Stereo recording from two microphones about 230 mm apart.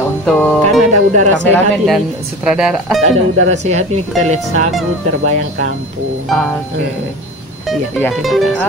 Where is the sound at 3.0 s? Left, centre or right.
Right.